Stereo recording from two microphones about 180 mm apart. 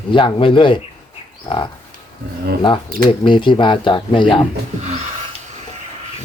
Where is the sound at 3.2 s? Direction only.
25° left (ahead or behind).